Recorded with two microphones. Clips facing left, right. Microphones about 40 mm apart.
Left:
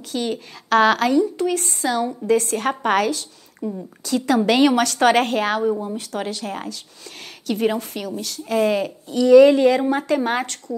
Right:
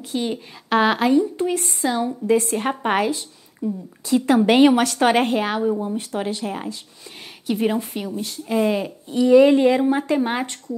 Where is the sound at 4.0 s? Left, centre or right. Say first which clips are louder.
Right 2 dB; right.